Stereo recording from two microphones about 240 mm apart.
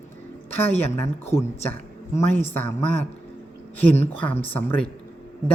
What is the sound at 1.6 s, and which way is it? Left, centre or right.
A woman's voice, centre.